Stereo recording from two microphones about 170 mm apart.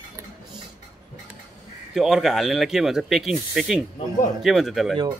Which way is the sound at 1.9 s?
Centre (ahead or behind).